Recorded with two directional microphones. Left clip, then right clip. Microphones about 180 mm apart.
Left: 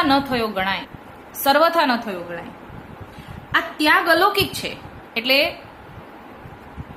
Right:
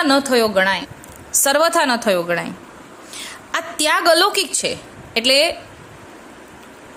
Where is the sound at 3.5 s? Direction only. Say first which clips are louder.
Left 1 dB; 70° right (ahead or behind).